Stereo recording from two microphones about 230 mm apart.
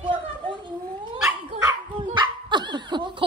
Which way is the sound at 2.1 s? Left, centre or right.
Centre.